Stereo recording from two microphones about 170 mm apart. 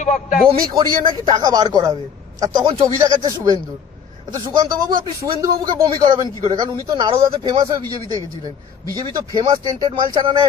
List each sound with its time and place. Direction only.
0.0 s a man's voice: 45° left (ahead or behind)
1.2 s speech: 25° right (ahead or behind)